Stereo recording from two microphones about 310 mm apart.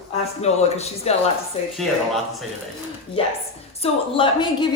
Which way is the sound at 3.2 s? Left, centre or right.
Centre.